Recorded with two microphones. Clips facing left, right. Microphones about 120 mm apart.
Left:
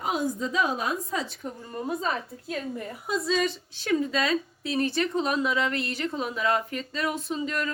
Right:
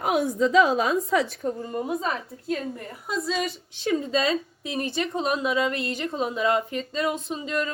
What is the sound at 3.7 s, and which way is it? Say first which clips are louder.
A woman's voice: right 1 dB; 20° right (ahead or behind).